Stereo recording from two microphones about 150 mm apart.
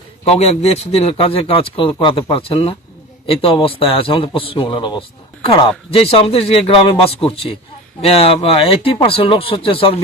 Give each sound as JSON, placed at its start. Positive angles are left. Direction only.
{"t": 0.3, "sound": "a man's voice", "side_deg": 45}